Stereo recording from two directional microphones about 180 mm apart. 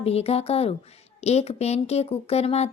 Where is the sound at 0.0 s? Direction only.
35° left (ahead or behind).